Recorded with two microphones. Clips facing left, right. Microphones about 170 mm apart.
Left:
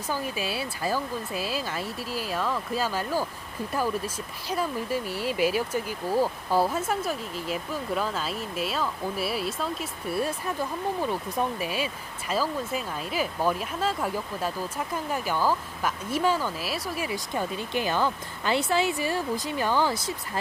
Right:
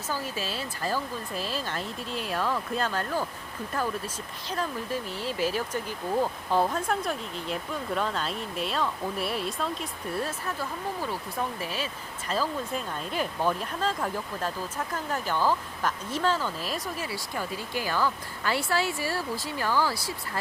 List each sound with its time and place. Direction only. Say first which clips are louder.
0.1 s speech: left 3 dB; 15° left (ahead or behind)
17.0 s speech: left 4 dB; 20° left (ahead or behind)